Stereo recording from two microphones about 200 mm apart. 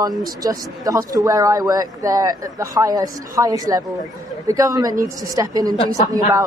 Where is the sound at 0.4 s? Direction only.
15° right (ahead or behind).